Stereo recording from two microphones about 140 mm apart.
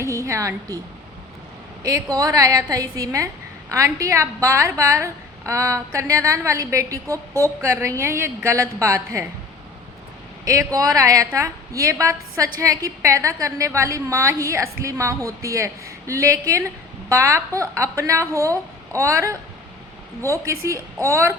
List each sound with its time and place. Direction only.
0.0 s a woman's voice: 20° right (ahead or behind)
1.8 s a woman's voice: 25° right (ahead or behind)
10.4 s a woman's voice: 25° right (ahead or behind)